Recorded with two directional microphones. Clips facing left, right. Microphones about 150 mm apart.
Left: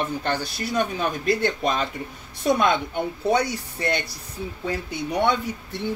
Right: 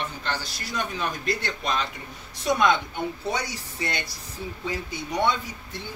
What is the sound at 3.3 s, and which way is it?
Speech, 55° left (ahead or behind).